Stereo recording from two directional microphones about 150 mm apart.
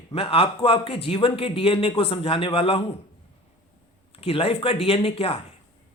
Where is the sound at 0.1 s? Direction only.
40° left (ahead or behind).